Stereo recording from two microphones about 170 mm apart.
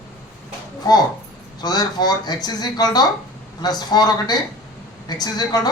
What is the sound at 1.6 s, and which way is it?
Speech, 25° left (ahead or behind).